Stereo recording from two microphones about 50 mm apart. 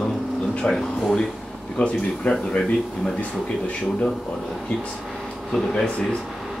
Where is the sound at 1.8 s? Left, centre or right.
Left.